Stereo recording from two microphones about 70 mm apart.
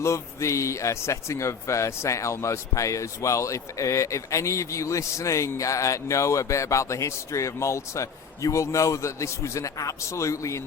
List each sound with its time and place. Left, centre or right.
0.0 s a man's voice: left